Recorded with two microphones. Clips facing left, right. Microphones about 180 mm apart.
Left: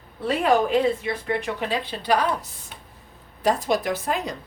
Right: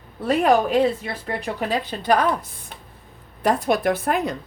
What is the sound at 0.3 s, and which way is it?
A woman's voice, 40° right (ahead or behind).